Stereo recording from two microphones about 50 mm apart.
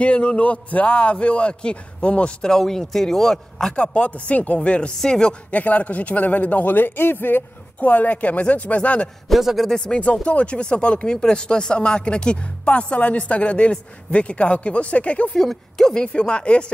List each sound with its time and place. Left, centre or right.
0.0 s speech: left
2.5 s speech: centre
3.7 s speech: left
5.5 s speech: left
9.3 s a man's voice: centre
9.7 s speech: centre
15.3 s speech: centre
15.9 s speech: centre